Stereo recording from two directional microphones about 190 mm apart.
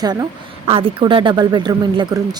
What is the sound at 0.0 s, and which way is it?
Speech, 20° right (ahead or behind).